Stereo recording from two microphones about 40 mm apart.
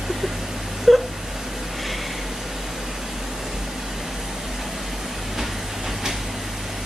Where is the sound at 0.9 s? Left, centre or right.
Centre.